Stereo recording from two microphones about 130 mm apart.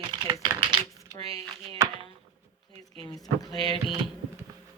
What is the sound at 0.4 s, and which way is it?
Typing, 35° right (ahead or behind).